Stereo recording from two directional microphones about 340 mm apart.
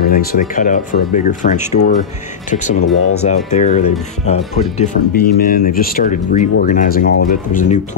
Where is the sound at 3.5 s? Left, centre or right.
Left.